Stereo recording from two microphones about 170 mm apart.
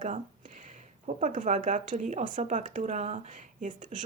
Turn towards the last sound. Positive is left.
turn(degrees=-45)  # may be behind; listen again after turning